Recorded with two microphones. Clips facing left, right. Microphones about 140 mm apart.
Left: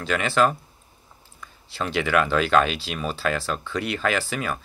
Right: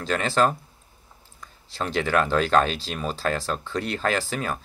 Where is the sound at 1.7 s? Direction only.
40° right (ahead or behind).